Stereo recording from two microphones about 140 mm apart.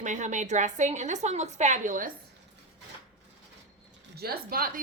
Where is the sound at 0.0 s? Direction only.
60° right (ahead or behind).